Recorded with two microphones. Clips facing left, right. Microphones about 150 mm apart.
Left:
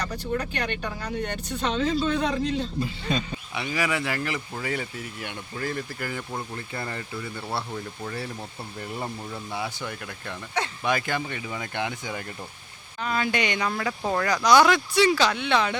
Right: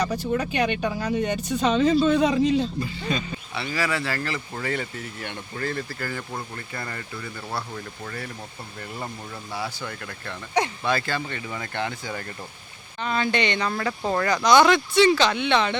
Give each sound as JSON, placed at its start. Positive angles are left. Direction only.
{"t": 0.1, "sound": "speech", "side_deg": 0}
{"t": 3.5, "sound": "speech", "side_deg": 15}
{"t": 9.6, "sound": "speech", "side_deg": 15}